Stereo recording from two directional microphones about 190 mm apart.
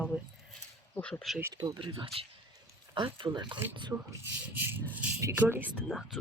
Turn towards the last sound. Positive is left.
turn(degrees=0)  # may be behind; listen again after turning